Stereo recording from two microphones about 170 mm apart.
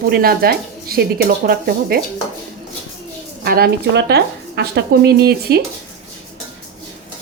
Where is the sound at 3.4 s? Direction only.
65° right (ahead or behind).